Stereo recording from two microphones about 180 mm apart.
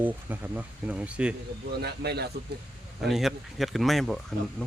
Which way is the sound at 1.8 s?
65° right (ahead or behind).